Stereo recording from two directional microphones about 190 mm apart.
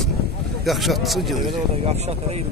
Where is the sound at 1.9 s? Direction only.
35° right (ahead or behind).